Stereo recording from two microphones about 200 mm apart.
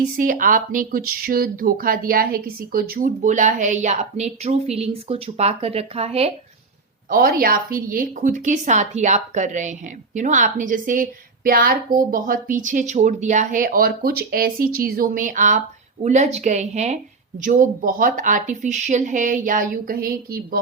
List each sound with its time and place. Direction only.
0.2 s speech: 40° right (ahead or behind)
7.1 s a woman's voice: 45° right (ahead or behind)